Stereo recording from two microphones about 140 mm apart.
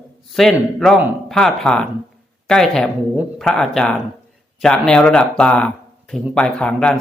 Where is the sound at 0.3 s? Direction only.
Centre (ahead or behind).